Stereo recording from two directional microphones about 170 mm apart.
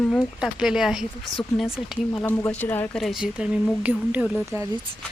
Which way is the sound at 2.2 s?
15° left (ahead or behind).